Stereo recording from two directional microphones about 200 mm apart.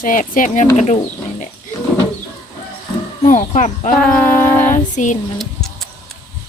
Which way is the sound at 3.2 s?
40° left (ahead or behind).